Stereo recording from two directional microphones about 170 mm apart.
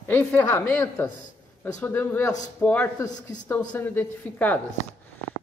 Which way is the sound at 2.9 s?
20° left (ahead or behind).